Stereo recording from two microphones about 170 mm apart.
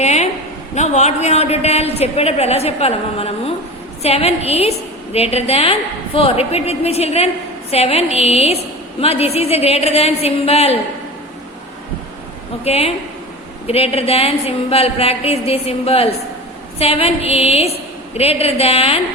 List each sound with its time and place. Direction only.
0.0 s a sound: 40° left (ahead or behind)
0.8 s a woman's voice: 40° left (ahead or behind)
12.6 s a woman's voice: 35° left (ahead or behind)